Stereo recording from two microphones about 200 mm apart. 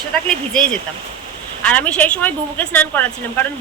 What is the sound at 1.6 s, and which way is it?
A woman's voice, 5° left (ahead or behind).